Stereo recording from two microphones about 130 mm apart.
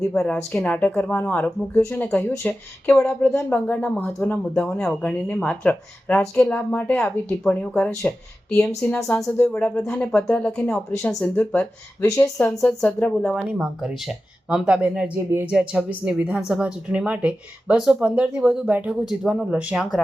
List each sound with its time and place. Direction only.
0.1 s speech: 10° left (ahead or behind)
14.5 s a woman's voice: 5° right (ahead or behind)